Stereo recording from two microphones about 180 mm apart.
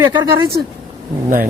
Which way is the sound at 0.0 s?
25° right (ahead or behind).